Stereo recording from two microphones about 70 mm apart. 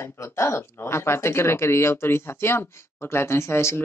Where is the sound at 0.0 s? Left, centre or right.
Left.